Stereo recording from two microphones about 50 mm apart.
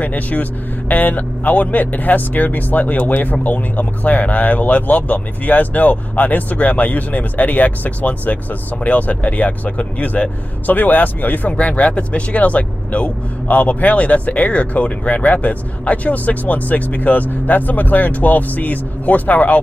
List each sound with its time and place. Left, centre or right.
0.0 s speech: left